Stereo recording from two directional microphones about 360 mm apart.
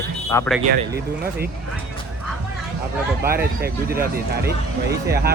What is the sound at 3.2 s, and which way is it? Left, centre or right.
Speech, right.